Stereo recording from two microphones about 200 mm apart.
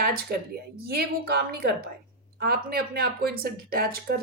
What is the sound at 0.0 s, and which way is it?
A woman's voice, 50° right (ahead or behind).